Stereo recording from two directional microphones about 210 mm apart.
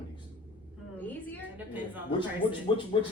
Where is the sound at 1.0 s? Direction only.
10° left (ahead or behind).